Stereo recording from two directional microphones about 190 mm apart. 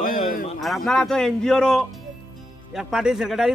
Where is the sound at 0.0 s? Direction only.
45° left (ahead or behind).